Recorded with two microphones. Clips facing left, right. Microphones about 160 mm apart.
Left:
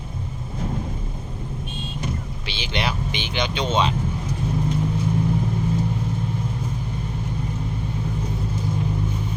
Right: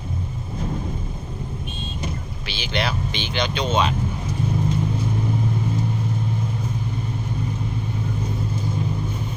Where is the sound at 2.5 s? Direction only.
20° left (ahead or behind).